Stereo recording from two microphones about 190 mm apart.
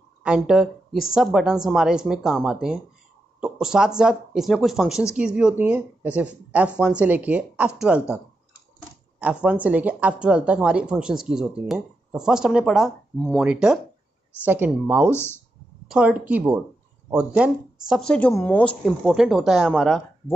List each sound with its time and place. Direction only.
0.2 s speech: 5° right (ahead or behind)
9.2 s speech: 5° right (ahead or behind)
15.0 s speech: 10° left (ahead or behind)
15.9 s speech: 5° right (ahead or behind)